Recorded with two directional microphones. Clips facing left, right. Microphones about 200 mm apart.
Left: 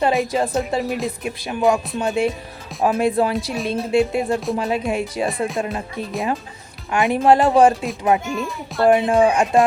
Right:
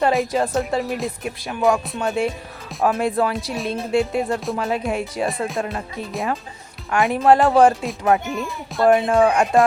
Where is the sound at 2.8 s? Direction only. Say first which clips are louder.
Left 2 dB; 25° left (ahead or behind).